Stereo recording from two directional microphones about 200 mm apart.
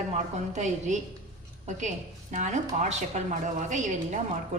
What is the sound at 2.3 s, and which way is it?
A woman's voice, 35° right (ahead or behind).